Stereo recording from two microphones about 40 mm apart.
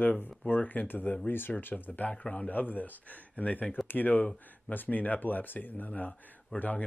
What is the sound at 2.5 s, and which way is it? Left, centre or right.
Speech, left.